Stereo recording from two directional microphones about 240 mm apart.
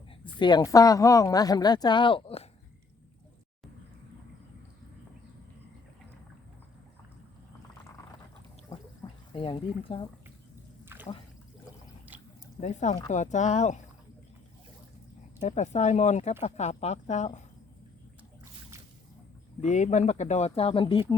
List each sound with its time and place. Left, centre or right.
0.3 s a woman's voice: centre
8.7 s gargling: centre
9.3 s speech: left
12.1 s drip: centre
12.5 s speech: left
15.4 s speech: left
19.6 s speech: left